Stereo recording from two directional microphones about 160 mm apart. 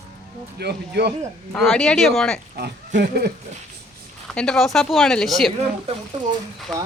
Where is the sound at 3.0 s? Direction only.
90° right.